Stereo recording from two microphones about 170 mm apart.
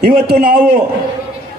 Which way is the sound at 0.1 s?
55° right (ahead or behind).